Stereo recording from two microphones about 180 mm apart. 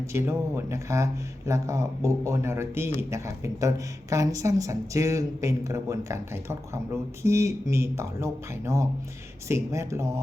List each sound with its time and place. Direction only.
0.0 s speech: 15° right (ahead or behind)